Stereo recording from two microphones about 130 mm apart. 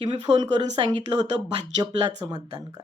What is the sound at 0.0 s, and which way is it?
Speech, 35° right (ahead or behind).